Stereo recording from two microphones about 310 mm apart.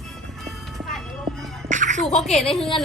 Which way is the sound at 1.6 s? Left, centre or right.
Right.